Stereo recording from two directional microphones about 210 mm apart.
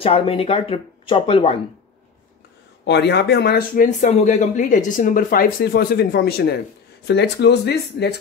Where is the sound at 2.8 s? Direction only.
55° left (ahead or behind).